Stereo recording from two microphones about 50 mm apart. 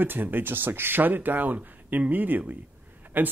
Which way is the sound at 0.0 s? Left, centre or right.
Right.